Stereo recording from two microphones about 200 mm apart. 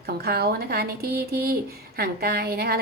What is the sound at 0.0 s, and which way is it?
A woman's voice, 50° right (ahead or behind).